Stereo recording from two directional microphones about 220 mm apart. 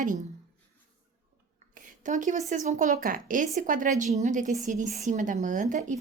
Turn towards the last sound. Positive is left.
turn(degrees=-35)  # may be behind; listen again after turning